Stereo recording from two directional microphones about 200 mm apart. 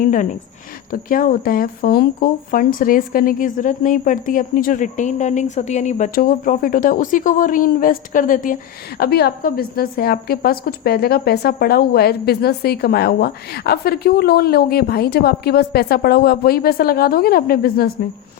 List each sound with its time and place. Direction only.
0.0 s a woman's voice: 40° left (ahead or behind)